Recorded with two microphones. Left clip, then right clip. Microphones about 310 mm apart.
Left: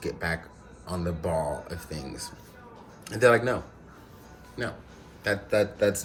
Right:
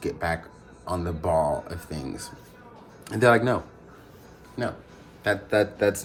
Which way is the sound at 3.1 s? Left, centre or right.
Right.